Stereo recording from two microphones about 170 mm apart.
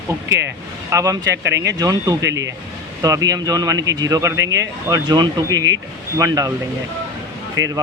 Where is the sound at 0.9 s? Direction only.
20° right (ahead or behind).